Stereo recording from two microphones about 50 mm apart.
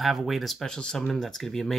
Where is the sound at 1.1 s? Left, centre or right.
Centre.